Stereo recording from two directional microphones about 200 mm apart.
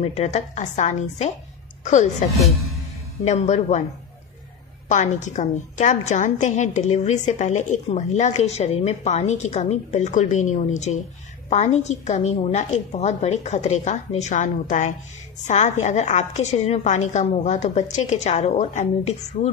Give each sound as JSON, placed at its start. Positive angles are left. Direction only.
{"t": 0.0, "sound": "a woman's voice", "side_deg": 30}
{"t": 3.3, "sound": "a woman's voice", "side_deg": 35}
{"t": 4.8, "sound": "a woman's voice", "side_deg": 35}